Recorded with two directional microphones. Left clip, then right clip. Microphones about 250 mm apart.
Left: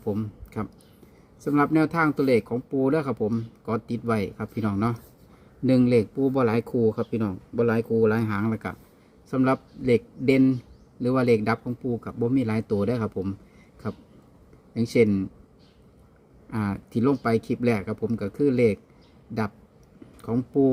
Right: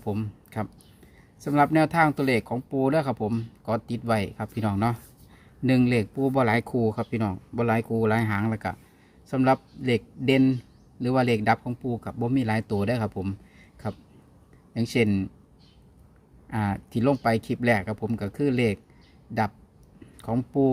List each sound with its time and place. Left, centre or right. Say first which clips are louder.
0.0 s speech: left 2 dB; centre
14.7 s speech: left 4 dB; right
16.5 s speech: right 2 dB; centre
20.2 s speech: left 2 dB; centre